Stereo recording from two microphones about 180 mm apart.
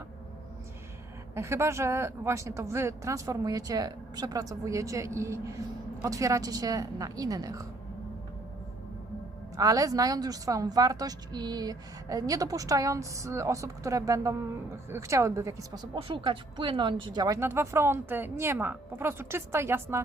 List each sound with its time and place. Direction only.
1.4 s a woman's voice: 15° right (ahead or behind)
9.6 s a woman's voice: 20° right (ahead or behind)